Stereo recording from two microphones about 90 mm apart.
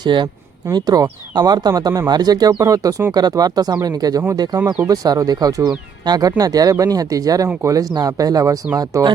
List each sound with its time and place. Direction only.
0.0 s speech: 60° right (ahead or behind); by 9.0 s 40° right (ahead or behind)